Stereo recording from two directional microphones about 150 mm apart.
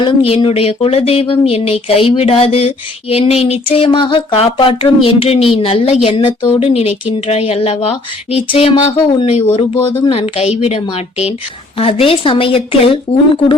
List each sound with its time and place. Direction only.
0.0 s a woman's voice: 35° left (ahead or behind)
9.7 s speech: 15° left (ahead or behind)
10.1 s a woman's voice: 40° left (ahead or behind)